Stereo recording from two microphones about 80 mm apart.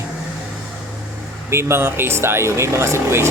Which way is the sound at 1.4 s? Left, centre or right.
Right.